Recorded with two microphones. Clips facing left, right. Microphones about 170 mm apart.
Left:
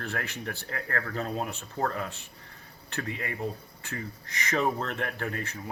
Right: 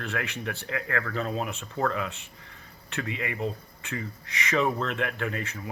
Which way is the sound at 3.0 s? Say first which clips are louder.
Right 2 dB; 90° right.